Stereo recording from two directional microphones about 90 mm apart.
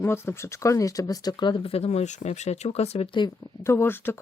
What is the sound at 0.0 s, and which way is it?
Speech, 30° left (ahead or behind).